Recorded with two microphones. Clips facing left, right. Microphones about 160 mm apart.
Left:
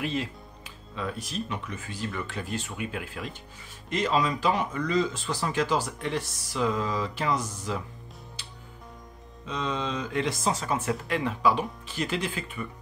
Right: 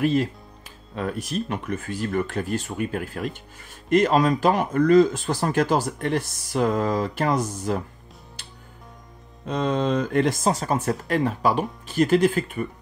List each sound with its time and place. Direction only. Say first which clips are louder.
0.0 s speech: right 9 dB; 45° right (ahead or behind)
9.5 s speech: right 8 dB; 50° right (ahead or behind)